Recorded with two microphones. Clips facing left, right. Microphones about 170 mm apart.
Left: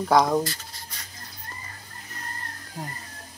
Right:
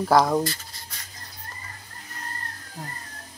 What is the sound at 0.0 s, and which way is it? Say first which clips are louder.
Rub: right 1 dB; 5° right (ahead or behind).